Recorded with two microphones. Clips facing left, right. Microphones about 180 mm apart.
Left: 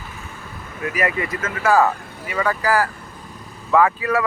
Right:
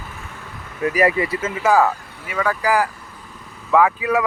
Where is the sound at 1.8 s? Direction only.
5° right (ahead or behind).